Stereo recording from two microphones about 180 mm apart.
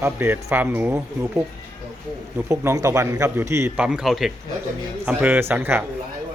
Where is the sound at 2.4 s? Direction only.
15° right (ahead or behind).